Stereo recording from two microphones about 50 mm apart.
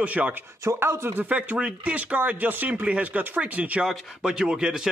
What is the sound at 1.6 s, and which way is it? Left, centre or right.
Speech, right.